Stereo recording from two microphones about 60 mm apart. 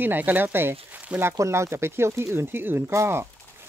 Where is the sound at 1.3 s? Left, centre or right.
Right.